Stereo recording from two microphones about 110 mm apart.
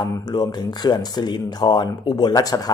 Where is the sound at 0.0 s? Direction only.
40° left (ahead or behind).